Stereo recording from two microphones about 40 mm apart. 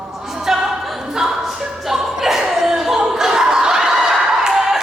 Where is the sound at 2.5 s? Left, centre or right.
Centre.